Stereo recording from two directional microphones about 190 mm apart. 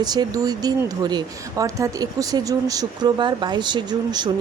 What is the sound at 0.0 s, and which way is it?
Speech, 20° right (ahead or behind).